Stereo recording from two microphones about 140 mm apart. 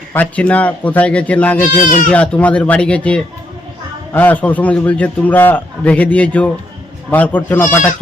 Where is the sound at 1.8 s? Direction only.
70° left (ahead or behind).